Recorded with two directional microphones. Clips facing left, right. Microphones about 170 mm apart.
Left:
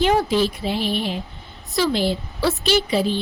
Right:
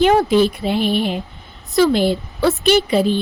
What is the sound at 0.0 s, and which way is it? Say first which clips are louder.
A woman's voice: right 5 dB; 55° right (ahead or behind).